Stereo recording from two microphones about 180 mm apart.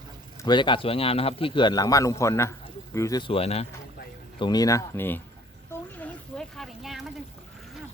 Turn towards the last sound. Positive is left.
turn(degrees=0)  # may be behind; listen again after turning